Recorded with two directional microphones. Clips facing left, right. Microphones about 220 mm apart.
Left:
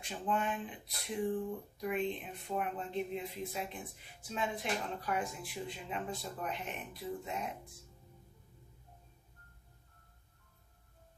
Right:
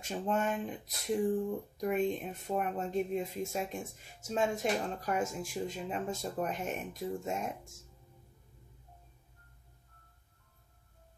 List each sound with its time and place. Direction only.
0.0 s speech: 45° right (ahead or behind)